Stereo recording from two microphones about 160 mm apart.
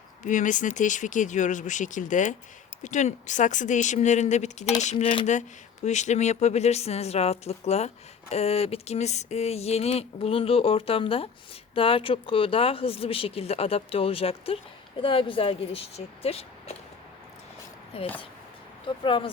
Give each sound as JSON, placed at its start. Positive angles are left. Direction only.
{"t": 0.2, "sound": "speech", "side_deg": 50}
{"t": 17.9, "sound": "speech", "side_deg": 35}